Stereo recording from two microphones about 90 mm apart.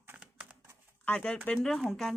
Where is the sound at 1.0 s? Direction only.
15° left (ahead or behind).